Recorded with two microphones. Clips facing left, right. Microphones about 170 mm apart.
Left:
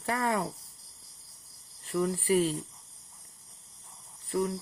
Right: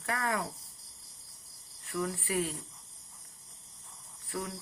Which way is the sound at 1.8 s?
30° left (ahead or behind).